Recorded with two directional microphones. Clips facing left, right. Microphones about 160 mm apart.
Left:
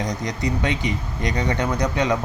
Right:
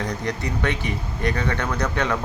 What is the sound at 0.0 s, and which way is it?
Speech, 15° left (ahead or behind).